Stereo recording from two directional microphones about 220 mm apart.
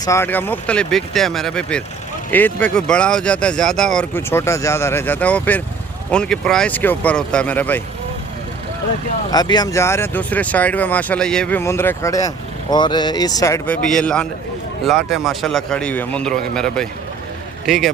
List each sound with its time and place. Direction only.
0.0 s speech: 10° left (ahead or behind)
9.3 s speech: 20° left (ahead or behind); by 17.9 s centre (ahead or behind)